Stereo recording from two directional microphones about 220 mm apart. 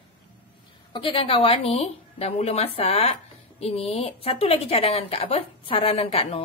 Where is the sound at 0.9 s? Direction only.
25° left (ahead or behind).